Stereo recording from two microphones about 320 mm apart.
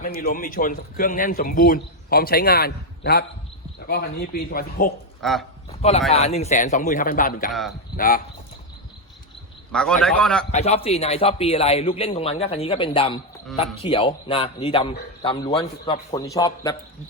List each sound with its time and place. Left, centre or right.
0.0 s a man's voice: left
5.2 s a man's voice: centre
6.1 s a man's voice: centre
9.7 s a man's voice: centre
10.5 s a man's voice: centre